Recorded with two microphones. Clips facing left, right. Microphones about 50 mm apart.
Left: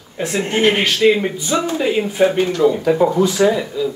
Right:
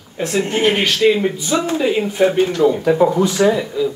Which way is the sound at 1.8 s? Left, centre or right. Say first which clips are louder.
Left 1 dB; centre.